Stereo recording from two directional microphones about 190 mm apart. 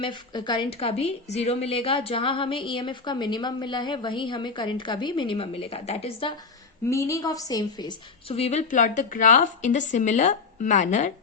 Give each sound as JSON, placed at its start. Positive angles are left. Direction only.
{"t": 0.0, "sound": "a woman's voice", "side_deg": 25}
{"t": 6.8, "sound": "a woman's voice", "side_deg": 15}